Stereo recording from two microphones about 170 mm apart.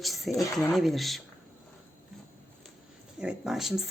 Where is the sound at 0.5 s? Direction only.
Centre (ahead or behind).